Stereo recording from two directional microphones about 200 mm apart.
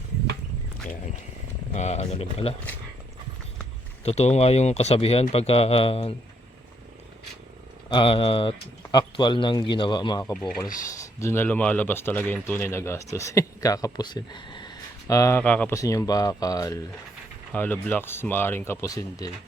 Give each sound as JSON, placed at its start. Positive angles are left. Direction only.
{"t": 1.7, "sound": "speech", "side_deg": 35}
{"t": 4.0, "sound": "speech", "side_deg": 30}
{"t": 7.9, "sound": "a man's voice", "side_deg": 25}